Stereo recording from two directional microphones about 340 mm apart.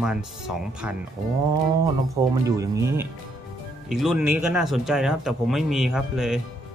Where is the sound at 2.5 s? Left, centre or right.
Centre.